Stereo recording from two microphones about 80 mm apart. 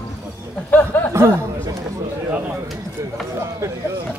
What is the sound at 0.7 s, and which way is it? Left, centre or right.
Speech, left.